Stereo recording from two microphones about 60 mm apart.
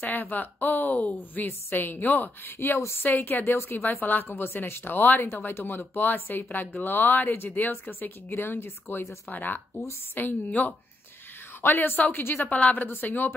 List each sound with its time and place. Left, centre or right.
0.0 s a woman's voice: left